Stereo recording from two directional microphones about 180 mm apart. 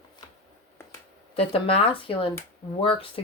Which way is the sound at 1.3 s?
30° left (ahead or behind).